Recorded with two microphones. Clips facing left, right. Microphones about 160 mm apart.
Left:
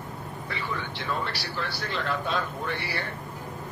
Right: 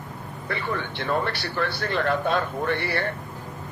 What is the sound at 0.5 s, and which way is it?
A man's voice, 55° right (ahead or behind).